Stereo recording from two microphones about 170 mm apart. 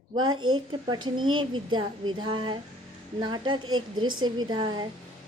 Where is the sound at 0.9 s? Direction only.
25° right (ahead or behind).